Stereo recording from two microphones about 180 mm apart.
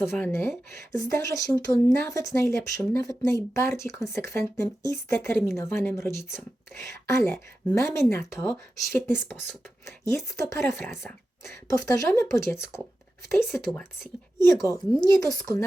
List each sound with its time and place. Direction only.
0.2 s speech: 15° left (ahead or behind)
13.4 s speech: 5° right (ahead or behind)
14.4 s speech: 20° left (ahead or behind)